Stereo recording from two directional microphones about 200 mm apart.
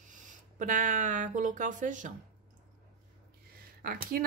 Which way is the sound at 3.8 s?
45° right (ahead or behind).